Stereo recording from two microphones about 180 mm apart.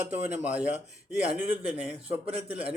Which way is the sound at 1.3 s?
10° right (ahead or behind).